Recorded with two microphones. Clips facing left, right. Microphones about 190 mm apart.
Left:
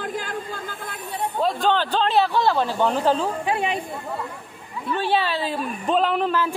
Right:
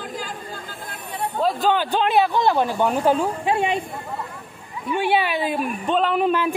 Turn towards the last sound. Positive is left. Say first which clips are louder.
# right 3 dB
turn(degrees=-15)  # may be behind; listen again after turning